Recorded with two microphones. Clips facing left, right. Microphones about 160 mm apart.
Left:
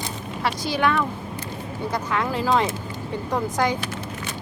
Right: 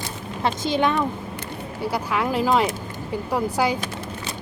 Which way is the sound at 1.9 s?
10° right (ahead or behind).